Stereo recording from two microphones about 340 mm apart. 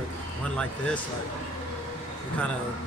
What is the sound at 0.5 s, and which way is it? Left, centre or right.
Speech, centre.